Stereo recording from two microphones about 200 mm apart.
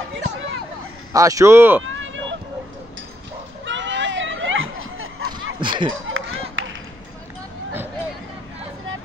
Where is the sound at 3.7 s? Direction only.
65° right (ahead or behind); by 5.2 s 85° right.